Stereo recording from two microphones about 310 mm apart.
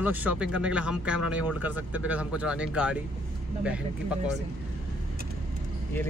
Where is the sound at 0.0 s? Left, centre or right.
Centre.